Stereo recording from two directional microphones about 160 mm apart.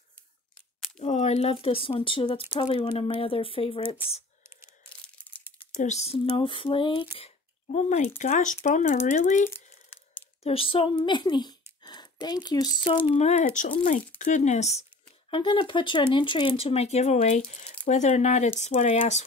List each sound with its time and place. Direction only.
0.9 s speech: 45° left (ahead or behind)
5.8 s speech: 45° left (ahead or behind)
7.2 s a sound: 40° left (ahead or behind)
8.2 s speech: 50° left (ahead or behind)
9.5 s crumpling: 15° left (ahead or behind)
10.4 s speech: 35° left (ahead or behind)